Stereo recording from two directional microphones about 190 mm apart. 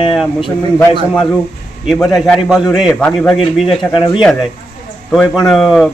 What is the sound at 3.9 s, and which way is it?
Speech, 25° left (ahead or behind).